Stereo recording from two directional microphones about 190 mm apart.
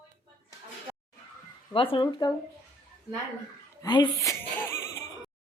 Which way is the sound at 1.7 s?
25° left (ahead or behind).